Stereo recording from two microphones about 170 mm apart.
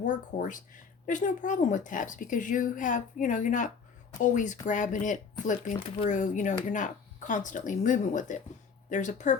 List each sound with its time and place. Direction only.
0.0 s speech: 50° left (ahead or behind)